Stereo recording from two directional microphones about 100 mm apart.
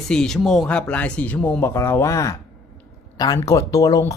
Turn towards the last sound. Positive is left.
turn(degrees=35)  # may be behind; listen again after turning